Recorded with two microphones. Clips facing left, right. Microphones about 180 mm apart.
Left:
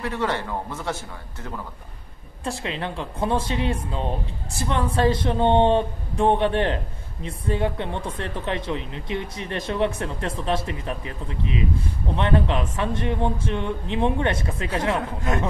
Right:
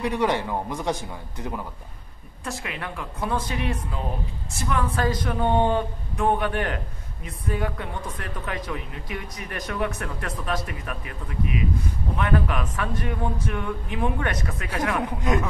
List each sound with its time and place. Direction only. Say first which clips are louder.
0.0 s a man's voice: right 2 dB; 15° right (ahead or behind)
2.4 s speech: left 4 dB; 30° left (ahead or behind)